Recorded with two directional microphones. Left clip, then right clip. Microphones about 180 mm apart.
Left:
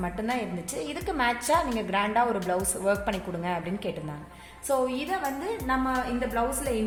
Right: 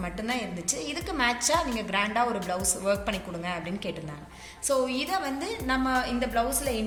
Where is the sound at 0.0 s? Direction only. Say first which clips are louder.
Left 1 dB; 60° left (ahead or behind).